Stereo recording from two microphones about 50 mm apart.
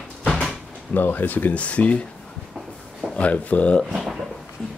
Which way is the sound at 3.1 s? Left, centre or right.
Left.